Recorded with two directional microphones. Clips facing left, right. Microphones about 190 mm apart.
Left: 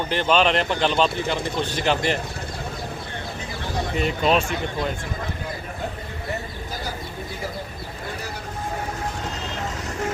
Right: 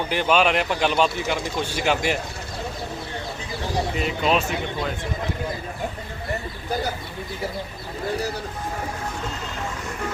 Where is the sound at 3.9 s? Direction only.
Centre (ahead or behind).